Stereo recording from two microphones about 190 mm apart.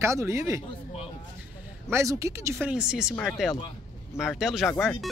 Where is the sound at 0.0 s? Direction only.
15° right (ahead or behind).